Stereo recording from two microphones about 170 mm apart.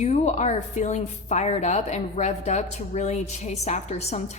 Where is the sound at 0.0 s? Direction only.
40° left (ahead or behind).